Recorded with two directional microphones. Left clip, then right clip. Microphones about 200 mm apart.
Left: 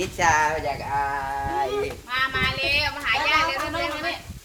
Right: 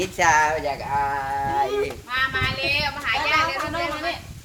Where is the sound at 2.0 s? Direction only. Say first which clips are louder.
Left 2 dB; centre (ahead or behind).